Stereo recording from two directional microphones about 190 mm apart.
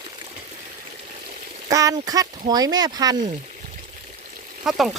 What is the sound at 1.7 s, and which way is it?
Speech, 20° right (ahead or behind).